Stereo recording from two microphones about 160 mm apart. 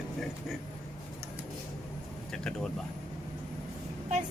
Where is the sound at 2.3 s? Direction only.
5° left (ahead or behind).